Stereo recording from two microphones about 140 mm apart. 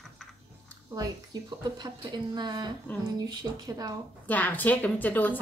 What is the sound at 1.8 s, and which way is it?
Speech, 30° right (ahead or behind).